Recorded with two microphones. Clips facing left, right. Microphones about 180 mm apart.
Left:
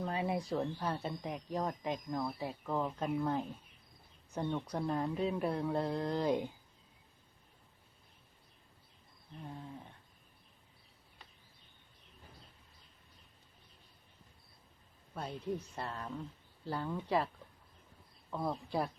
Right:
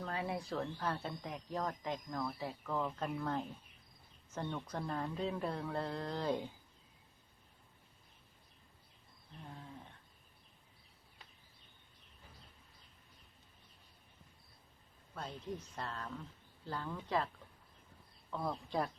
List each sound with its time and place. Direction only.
0.0 s speech: 20° left (ahead or behind)
15.1 s speech: 10° left (ahead or behind)
18.3 s speech: 10° left (ahead or behind)